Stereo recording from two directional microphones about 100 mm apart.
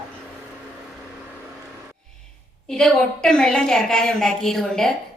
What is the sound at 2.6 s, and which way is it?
A woman's voice, 5° left (ahead or behind).